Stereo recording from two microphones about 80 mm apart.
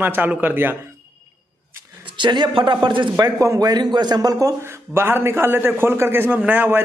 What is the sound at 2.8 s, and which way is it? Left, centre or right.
Speech, right.